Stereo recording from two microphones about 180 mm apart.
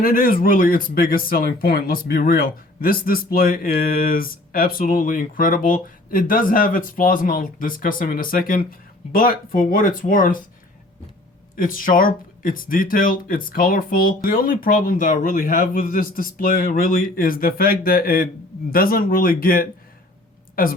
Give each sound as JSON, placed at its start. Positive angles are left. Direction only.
{"t": 0.0, "sound": "speech", "side_deg": 50}
{"t": 11.5, "sound": "speech", "side_deg": 50}